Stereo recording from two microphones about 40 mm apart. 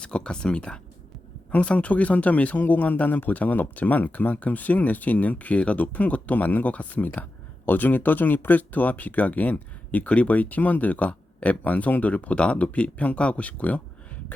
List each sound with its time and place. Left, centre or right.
0.0 s speech: left